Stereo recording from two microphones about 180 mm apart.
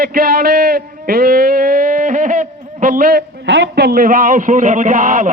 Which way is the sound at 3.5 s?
70° right (ahead or behind).